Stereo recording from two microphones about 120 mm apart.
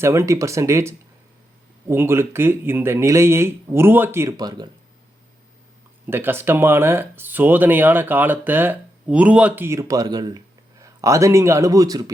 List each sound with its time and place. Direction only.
0.0 s speech: 25° right (ahead or behind)
4.4 s speech: 35° right (ahead or behind)
6.1 s speech: 20° right (ahead or behind)
9.6 s speech: 25° right (ahead or behind)